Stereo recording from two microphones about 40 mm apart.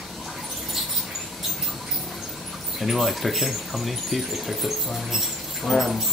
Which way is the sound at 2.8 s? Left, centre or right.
Centre.